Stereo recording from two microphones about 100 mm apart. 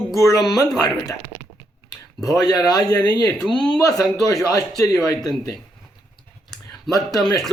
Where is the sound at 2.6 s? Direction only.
40° left (ahead or behind).